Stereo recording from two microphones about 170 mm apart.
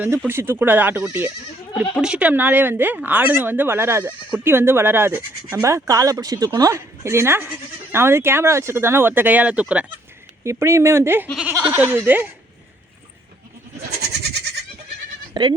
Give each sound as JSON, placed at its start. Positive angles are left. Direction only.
{"t": 0.3, "sound": "speech", "side_deg": -15}
{"t": 14.1, "sound": "goat", "side_deg": -75}
{"t": 15.3, "sound": "speech", "side_deg": -25}